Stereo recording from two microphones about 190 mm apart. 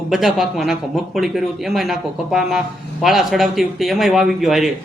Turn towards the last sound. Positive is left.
turn(degrees=0)  # may be behind; listen again after turning